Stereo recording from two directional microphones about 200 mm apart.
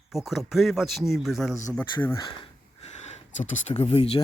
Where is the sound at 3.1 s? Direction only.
40° left (ahead or behind).